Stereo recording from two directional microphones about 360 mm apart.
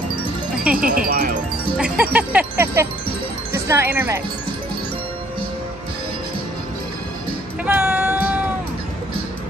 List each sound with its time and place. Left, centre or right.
0.6 s wind chime: centre
0.8 s wind chime: right
1.8 s speech: centre
7.6 s music: centre